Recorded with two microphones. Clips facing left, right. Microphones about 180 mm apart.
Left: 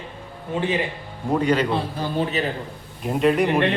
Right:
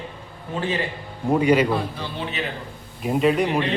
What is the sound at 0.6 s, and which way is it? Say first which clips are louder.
Speech: left 2 dB; 15° left (ahead or behind).